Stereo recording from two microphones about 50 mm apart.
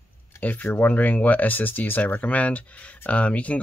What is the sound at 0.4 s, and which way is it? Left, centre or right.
Speech, left.